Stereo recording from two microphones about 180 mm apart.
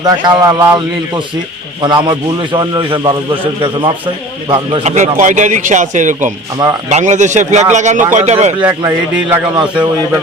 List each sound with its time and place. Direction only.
0.0 s a man's voice: 20° right (ahead or behind); by 8.6 s 40° right (ahead or behind)
9.6 s a man's voice: 25° right (ahead or behind)